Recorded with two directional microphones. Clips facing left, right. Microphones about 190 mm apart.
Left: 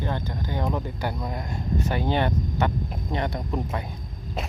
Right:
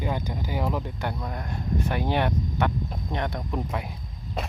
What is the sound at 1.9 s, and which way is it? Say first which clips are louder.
Speech: left 1 dB; centre (ahead or behind).